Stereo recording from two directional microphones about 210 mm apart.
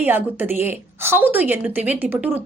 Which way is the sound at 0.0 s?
10° right (ahead or behind).